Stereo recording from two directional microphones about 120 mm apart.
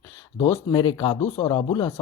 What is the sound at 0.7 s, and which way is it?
Speech, 40° left (ahead or behind).